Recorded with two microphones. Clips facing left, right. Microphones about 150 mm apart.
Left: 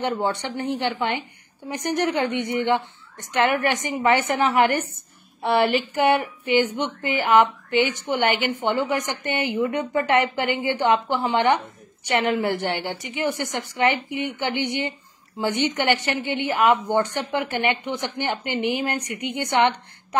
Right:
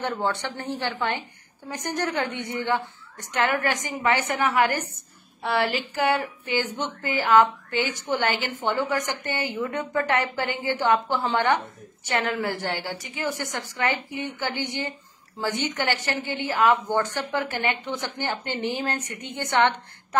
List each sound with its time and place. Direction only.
0.0 s a woman's voice: 15° left (ahead or behind)